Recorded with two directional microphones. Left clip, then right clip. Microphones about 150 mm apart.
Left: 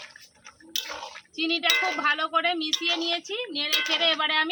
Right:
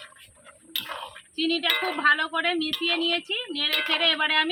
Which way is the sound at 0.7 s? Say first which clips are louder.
Even; 35° left (ahead or behind).